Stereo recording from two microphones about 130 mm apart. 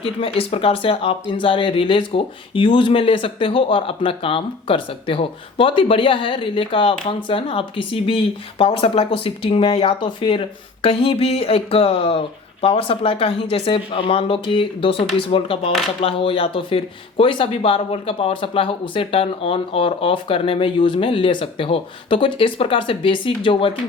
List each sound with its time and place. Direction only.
0.0 s speech: 45° left (ahead or behind)